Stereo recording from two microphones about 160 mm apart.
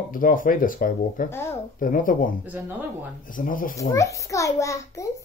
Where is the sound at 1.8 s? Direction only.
60° left (ahead or behind).